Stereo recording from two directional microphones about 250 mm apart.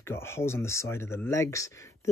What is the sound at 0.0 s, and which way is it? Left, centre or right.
Speech, centre.